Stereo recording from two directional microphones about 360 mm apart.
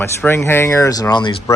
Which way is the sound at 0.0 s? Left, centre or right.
Centre.